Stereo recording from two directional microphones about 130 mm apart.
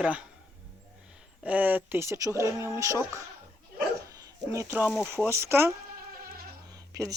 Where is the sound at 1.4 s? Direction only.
15° right (ahead or behind).